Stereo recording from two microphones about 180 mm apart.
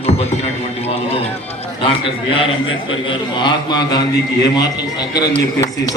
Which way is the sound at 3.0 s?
25° left (ahead or behind).